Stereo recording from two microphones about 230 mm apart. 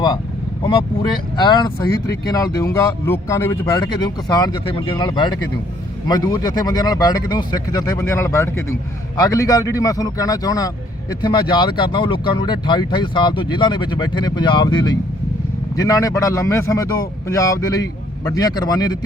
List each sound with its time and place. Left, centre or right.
1.4 s speech: centre